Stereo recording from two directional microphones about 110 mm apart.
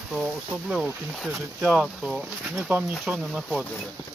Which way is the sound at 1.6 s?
10° right (ahead or behind).